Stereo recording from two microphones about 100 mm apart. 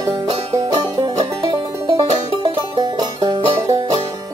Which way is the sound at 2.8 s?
45° right (ahead or behind).